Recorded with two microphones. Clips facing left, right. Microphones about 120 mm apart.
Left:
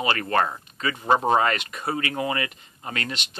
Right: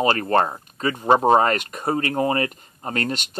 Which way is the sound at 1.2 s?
35° right (ahead or behind).